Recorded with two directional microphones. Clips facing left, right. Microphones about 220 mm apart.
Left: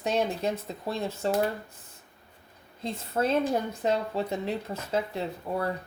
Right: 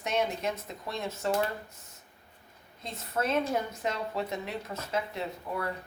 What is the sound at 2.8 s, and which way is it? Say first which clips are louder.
A woman's voice: left 4 dB; 30° left (ahead or behind).